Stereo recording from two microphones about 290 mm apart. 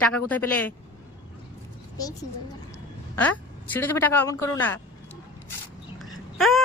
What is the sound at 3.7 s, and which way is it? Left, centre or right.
Speech, centre.